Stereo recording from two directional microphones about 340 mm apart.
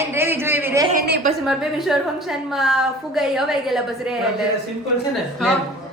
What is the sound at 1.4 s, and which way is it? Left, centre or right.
A woman's voice, centre.